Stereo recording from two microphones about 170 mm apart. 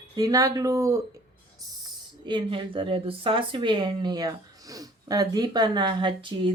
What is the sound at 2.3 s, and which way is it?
Speech, 30° right (ahead or behind).